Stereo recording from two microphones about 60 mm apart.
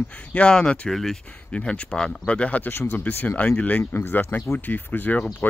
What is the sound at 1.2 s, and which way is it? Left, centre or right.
Speech, centre.